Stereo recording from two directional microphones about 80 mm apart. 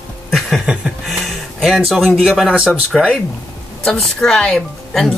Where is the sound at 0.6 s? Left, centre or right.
Centre.